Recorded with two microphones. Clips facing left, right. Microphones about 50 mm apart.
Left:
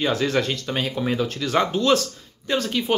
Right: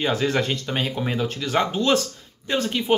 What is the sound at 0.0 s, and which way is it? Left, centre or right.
Speech, right.